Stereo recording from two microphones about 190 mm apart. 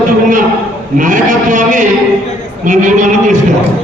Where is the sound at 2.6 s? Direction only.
40° right (ahead or behind).